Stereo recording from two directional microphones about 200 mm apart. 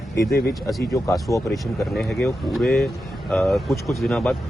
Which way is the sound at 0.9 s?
15° left (ahead or behind).